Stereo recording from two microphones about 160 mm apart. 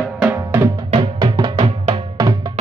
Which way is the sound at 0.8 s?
30° right (ahead or behind).